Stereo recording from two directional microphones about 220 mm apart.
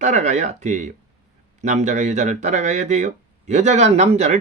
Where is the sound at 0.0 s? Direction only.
30° right (ahead or behind).